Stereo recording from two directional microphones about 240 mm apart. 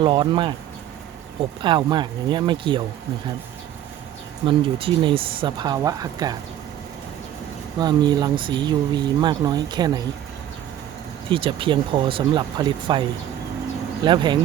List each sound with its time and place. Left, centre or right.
0.0 s speech: centre
1.6 s speech: centre
4.4 s speech: right
7.8 s speech: centre
11.3 s speech: right
14.0 s speech: centre